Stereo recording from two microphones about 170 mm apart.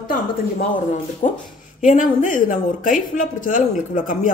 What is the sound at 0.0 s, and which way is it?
A woman's voice, 55° left (ahead or behind).